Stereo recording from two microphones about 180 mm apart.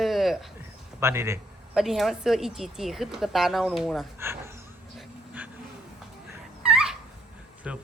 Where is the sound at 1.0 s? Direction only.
15° right (ahead or behind).